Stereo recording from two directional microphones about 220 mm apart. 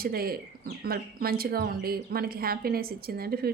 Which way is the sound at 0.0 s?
45° right (ahead or behind).